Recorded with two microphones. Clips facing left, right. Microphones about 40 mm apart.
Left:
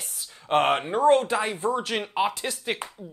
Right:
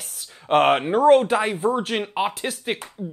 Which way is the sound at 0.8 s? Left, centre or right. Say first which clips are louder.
Right 5 dB; right.